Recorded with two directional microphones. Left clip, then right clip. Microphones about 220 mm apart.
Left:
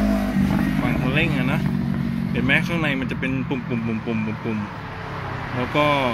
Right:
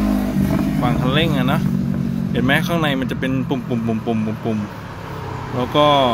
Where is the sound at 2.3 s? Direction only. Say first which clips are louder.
Right 3 dB; 10° right (ahead or behind).